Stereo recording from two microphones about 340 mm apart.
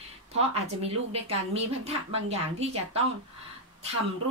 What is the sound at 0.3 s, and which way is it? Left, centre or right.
Speech, centre.